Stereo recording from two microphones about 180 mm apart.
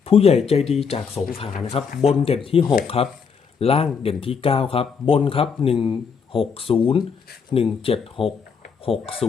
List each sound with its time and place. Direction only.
0.0 s speech: 35° left (ahead or behind)